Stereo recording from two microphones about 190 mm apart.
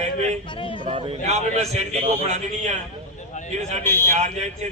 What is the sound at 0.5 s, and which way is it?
Speech, 25° left (ahead or behind).